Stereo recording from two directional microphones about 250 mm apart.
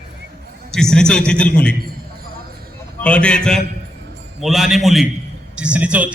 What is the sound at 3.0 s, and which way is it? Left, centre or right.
A man's voice, centre.